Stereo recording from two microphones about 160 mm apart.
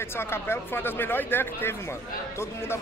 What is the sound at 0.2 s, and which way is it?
Speech, 15° left (ahead or behind).